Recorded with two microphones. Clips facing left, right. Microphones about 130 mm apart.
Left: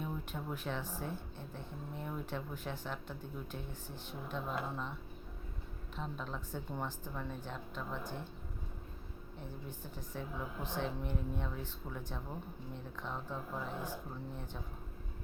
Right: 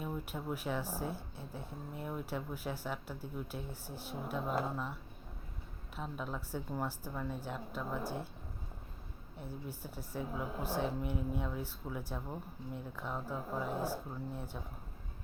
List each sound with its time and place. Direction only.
0.0 s speech: 10° right (ahead or behind)
6.0 s speech: 5° right (ahead or behind)
9.4 s speech: 10° right (ahead or behind)